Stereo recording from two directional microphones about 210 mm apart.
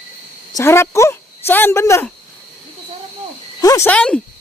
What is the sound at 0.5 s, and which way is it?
Speech, 10° left (ahead or behind).